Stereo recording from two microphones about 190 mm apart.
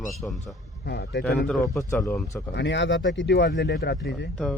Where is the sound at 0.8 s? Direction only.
65° left (ahead or behind).